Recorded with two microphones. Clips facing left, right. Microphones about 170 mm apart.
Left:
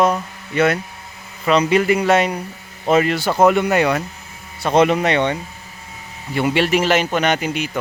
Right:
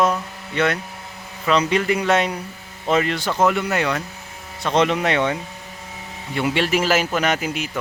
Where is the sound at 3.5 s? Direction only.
20° left (ahead or behind).